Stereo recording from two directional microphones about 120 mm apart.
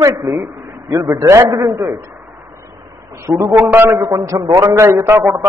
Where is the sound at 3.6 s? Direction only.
15° right (ahead or behind).